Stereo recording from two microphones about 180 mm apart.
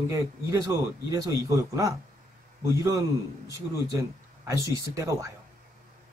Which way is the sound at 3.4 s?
20° right (ahead or behind).